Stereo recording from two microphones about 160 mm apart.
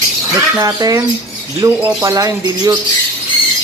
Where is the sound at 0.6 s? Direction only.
25° right (ahead or behind).